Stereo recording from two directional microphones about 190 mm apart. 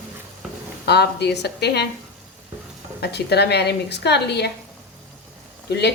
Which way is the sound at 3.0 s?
60° left (ahead or behind).